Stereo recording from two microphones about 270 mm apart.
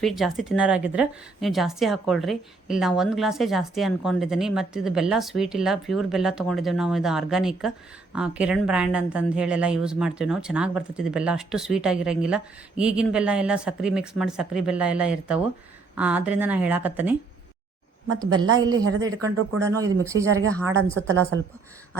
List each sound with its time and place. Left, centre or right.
0.0 s a woman's voice: centre
18.5 s speech: centre
21.1 s a woman's voice: right